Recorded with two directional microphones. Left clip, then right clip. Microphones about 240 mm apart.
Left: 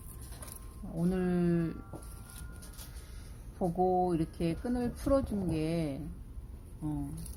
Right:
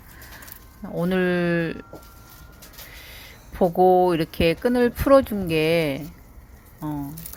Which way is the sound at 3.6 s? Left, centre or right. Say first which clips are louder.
Right 13 dB; right.